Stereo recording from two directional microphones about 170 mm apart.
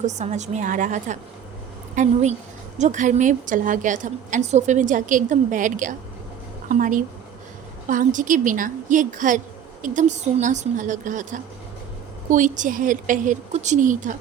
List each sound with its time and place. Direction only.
0.0 s a woman's voice: 45° right (ahead or behind)